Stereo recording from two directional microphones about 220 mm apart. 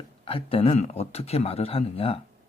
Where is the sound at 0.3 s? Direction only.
25° left (ahead or behind).